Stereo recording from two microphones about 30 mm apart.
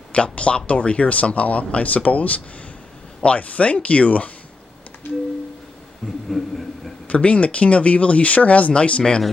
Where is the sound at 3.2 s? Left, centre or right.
Left.